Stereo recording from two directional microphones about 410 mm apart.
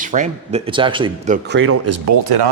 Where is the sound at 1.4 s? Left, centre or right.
Right.